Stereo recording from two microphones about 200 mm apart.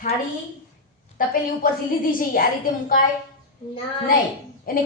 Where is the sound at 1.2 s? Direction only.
45° left (ahead or behind).